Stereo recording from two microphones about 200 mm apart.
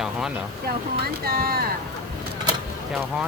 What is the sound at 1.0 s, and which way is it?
Speech, 50° right (ahead or behind).